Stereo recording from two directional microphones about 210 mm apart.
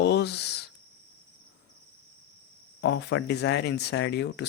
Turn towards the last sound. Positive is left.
turn(degrees=55)  # may be behind; listen again after turning